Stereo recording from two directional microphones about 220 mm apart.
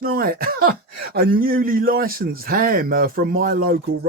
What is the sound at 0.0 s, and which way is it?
Throat clearing, 40° right (ahead or behind).